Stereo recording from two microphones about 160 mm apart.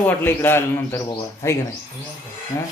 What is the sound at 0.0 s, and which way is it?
A man's voice, 15° left (ahead or behind).